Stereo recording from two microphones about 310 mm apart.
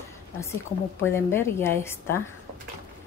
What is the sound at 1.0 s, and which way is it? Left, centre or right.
Speech, centre.